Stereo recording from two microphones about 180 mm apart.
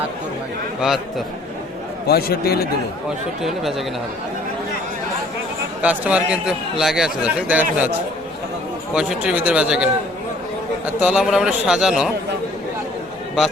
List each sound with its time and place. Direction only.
2.0 s speech: 60° left (ahead or behind)
3.4 s a man's voice: centre (ahead or behind)
5.8 s a man's voice: 5° right (ahead or behind)
9.0 s a man's voice: 5° right (ahead or behind)
11.0 s a man's voice: 5° right (ahead or behind)